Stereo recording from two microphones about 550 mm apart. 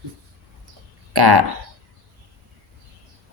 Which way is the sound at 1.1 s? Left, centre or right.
Right.